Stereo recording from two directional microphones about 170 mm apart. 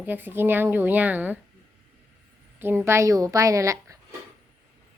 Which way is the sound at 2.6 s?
15° right (ahead or behind).